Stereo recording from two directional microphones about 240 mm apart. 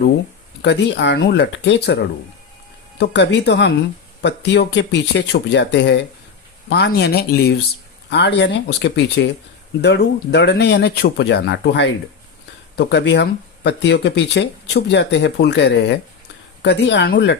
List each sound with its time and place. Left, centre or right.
0.6 s speech: left
3.0 s speech: left